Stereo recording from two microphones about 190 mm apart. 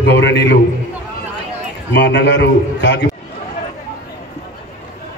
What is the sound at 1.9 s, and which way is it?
A man's voice, 65° left (ahead or behind).